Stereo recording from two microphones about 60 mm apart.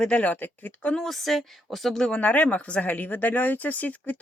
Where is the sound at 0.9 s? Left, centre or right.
Centre.